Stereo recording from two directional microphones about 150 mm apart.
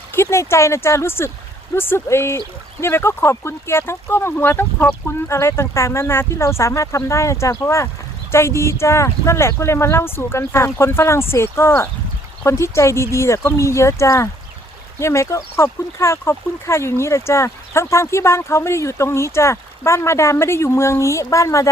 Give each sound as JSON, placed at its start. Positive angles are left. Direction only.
{"t": 0.1, "sound": "speech", "side_deg": 15}